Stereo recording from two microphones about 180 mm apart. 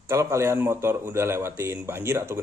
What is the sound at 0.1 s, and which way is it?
Speech, 15° right (ahead or behind).